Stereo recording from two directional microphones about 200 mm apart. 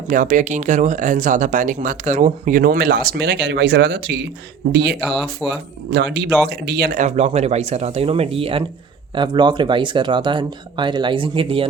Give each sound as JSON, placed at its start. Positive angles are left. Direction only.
{"t": 0.1, "sound": "speech", "side_deg": -40}
{"t": 4.9, "sound": "speech", "side_deg": 0}
{"t": 5.5, "sound": "speech", "side_deg": -60}